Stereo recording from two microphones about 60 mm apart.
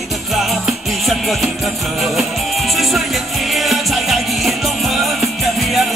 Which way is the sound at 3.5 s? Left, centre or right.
Centre.